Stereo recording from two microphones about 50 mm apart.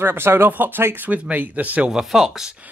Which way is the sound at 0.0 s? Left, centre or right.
Right.